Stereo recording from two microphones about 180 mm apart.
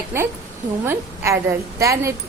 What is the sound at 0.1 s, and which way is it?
Speech, 15° right (ahead or behind).